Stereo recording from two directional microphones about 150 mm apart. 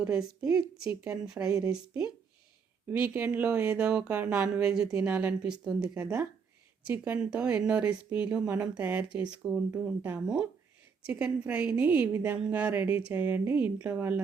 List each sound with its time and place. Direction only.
0.0 s a woman's voice: 5° right (ahead or behind)
6.0 s a woman's voice: 20° right (ahead or behind)